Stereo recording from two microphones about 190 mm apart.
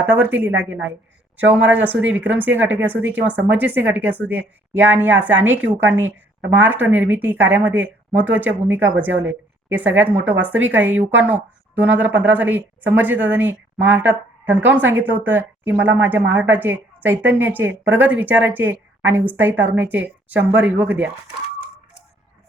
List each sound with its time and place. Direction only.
0.0 s a woman's voice: 10° right (ahead or behind)
0.5 s a woman's voice: 80° right
1.6 s a woman's voice: 10° right (ahead or behind)